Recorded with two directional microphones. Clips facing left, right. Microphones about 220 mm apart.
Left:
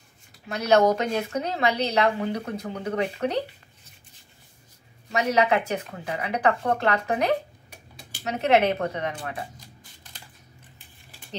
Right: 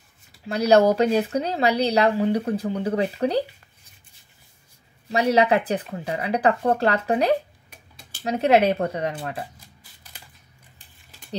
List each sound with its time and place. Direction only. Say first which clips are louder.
0.5 s speech: right 3 dB; 35° right (ahead or behind)
5.1 s speech: right 3 dB; 30° right (ahead or behind)